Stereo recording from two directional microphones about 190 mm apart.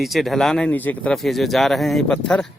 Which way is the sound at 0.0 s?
Centre (ahead or behind).